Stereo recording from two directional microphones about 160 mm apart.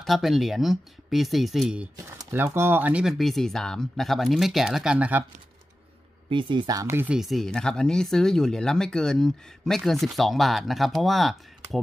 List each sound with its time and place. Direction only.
0.0 s speech: centre (ahead or behind)
2.1 s speech: 15° right (ahead or behind)
6.2 s speech: 30° right (ahead or behind); by 7.2 s 15° right (ahead or behind)
7.2 s speech: centre (ahead or behind)